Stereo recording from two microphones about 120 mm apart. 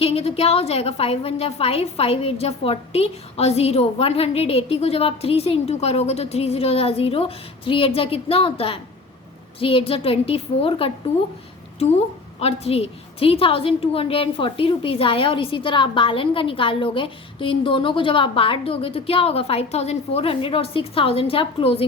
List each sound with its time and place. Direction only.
0.0 s a woman's voice: 55° left (ahead or behind)